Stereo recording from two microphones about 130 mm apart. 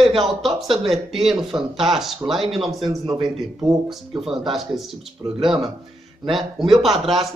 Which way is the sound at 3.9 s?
Centre (ahead or behind).